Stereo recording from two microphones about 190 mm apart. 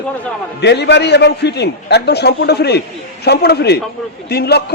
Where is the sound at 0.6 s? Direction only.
65° left (ahead or behind).